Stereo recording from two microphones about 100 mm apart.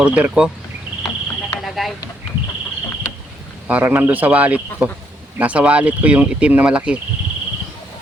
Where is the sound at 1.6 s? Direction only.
Centre (ahead or behind).